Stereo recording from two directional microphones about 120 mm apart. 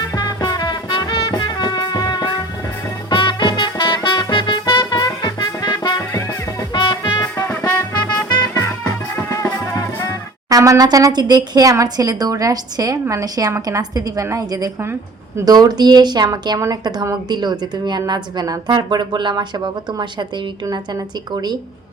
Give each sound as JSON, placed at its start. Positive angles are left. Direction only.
{"t": 0.1, "sound": "music", "side_deg": 35}
{"t": 9.3, "sound": "music", "side_deg": 30}
{"t": 10.5, "sound": "a woman's voice", "side_deg": -30}